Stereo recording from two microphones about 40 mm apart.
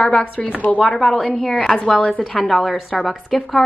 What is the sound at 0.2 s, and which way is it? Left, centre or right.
Speech, left.